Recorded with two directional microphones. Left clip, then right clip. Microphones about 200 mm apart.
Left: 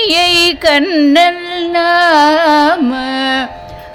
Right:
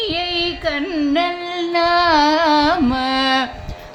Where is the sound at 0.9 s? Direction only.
40° left (ahead or behind).